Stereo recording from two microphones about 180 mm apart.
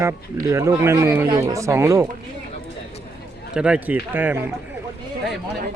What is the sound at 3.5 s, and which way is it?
Speech, 5° right (ahead or behind).